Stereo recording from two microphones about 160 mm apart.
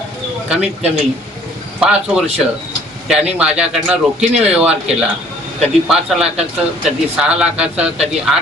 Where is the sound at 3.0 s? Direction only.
5° right (ahead or behind).